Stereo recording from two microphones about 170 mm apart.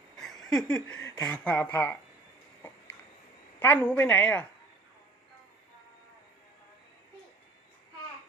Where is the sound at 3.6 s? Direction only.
10° left (ahead or behind).